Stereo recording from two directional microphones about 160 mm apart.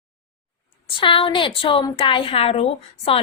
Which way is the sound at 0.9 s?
35° left (ahead or behind).